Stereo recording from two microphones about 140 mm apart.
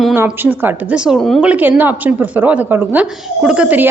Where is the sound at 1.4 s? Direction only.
10° right (ahead or behind).